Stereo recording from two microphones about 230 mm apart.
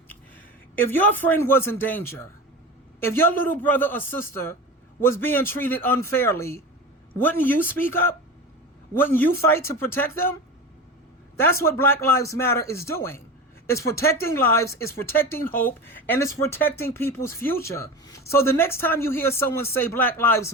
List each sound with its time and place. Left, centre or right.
0.8 s a man's voice: centre
11.3 s speech: centre